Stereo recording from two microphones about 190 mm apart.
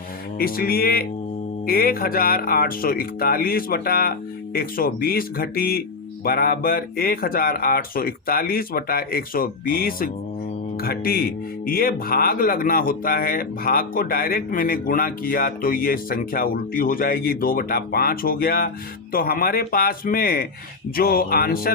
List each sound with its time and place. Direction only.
0.3 s speech: 50° left (ahead or behind)